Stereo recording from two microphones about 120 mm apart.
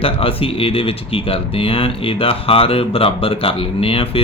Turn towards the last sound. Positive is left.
turn(degrees=50)  # may be behind; listen again after turning